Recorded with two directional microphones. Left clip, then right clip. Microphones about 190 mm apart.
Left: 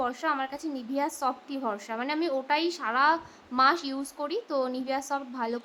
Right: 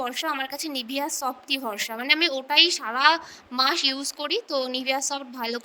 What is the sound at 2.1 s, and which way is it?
A woman's voice, 50° right (ahead or behind).